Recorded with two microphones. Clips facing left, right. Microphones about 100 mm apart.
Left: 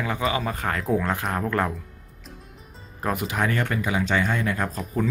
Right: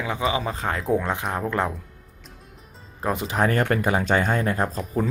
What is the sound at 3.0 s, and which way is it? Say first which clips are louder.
Speech: right 1 dB; 20° right (ahead or behind).